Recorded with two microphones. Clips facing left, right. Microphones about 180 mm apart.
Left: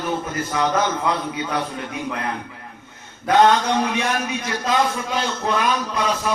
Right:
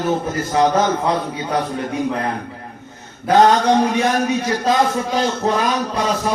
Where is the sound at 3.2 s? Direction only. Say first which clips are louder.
Right 3 dB; 35° right (ahead or behind).